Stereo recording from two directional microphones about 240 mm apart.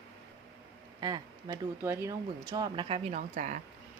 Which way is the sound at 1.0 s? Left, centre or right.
Centre.